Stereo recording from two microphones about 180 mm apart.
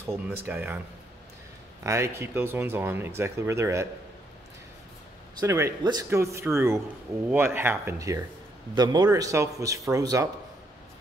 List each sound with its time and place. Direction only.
0.0 s speech: 15° right (ahead or behind)
1.8 s speech: 15° right (ahead or behind)
5.4 s speech: 15° right (ahead or behind)